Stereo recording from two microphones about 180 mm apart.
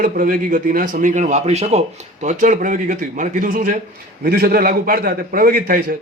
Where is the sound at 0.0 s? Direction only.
50° right (ahead or behind).